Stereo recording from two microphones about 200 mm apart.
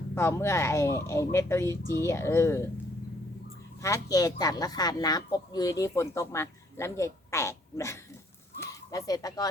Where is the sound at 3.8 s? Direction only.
15° left (ahead or behind).